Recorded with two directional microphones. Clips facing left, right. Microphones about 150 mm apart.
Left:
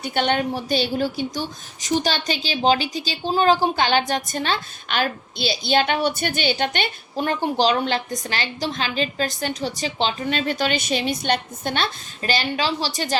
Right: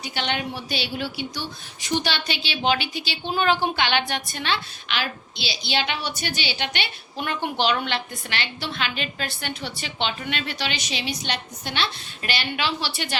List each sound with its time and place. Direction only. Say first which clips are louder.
0.0 s a woman's voice: left 6 dB; 50° left (ahead or behind)